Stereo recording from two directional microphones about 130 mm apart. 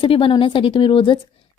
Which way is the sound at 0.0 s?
40° left (ahead or behind).